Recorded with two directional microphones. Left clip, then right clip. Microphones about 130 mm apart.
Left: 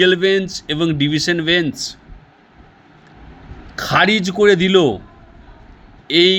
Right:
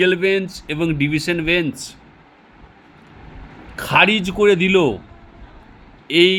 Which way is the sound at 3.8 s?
30° left (ahead or behind).